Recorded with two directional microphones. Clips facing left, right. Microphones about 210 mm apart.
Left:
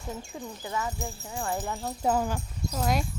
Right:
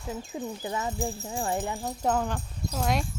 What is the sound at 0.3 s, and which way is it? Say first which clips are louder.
Speech: right 3 dB; 25° right (ahead or behind).